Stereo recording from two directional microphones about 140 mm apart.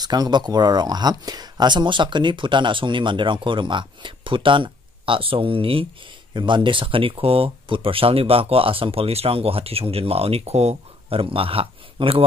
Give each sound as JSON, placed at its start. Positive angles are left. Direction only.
{"t": 0.0, "sound": "speech", "side_deg": -30}